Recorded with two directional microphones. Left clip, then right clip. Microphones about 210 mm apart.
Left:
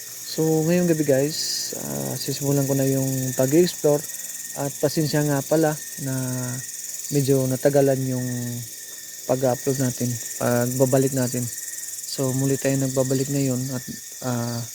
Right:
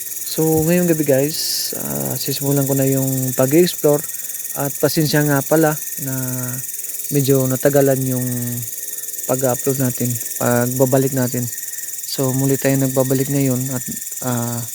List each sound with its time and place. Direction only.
0.5 s speech: 15° right (ahead or behind)
6.1 s speech: 5° right (ahead or behind)
7.1 s speech: 20° right (ahead or behind)